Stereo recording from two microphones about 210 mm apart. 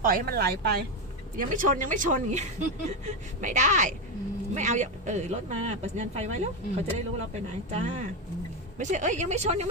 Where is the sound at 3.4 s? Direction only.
35° right (ahead or behind).